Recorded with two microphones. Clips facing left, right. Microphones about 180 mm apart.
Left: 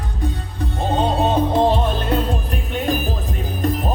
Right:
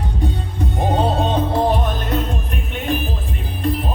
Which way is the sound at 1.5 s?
25° left (ahead or behind).